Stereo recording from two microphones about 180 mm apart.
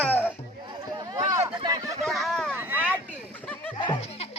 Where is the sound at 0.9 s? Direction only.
20° right (ahead or behind).